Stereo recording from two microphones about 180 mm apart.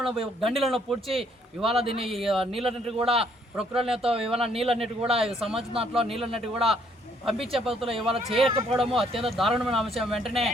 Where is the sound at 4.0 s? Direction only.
30° right (ahead or behind).